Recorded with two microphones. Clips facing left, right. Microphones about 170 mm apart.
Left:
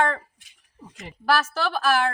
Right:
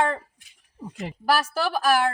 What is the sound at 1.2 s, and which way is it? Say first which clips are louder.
Speech: even; 10° right (ahead or behind).